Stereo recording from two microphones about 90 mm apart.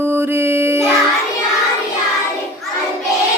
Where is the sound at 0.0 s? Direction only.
25° right (ahead or behind).